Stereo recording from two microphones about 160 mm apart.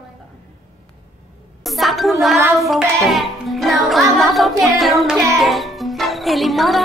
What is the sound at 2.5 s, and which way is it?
Music, centre (ahead or behind).